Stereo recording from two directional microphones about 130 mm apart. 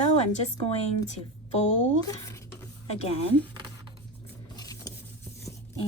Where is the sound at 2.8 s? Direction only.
55° left (ahead or behind).